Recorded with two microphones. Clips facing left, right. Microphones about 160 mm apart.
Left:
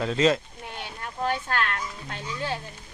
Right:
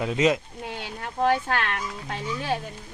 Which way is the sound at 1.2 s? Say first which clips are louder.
Right 4 dB; 65° right (ahead or behind).